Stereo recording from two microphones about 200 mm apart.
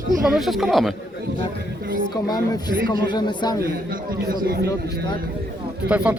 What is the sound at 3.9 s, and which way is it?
Speech, 45° right (ahead or behind).